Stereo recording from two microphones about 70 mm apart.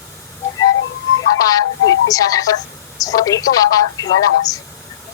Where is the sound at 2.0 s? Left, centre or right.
Left.